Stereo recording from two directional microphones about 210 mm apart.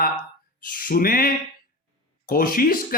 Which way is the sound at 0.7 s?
45° left (ahead or behind).